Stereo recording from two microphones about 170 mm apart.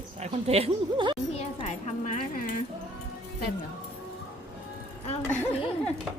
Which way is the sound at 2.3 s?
55° left (ahead or behind).